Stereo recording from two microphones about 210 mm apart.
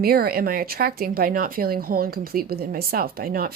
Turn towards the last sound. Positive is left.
turn(degrees=-45)  # may be behind; listen again after turning